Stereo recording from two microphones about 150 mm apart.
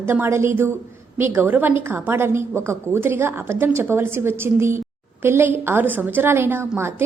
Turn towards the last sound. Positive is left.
turn(degrees=-15)  # may be behind; listen again after turning